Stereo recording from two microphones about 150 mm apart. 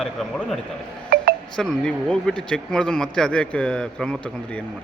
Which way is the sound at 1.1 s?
85° right.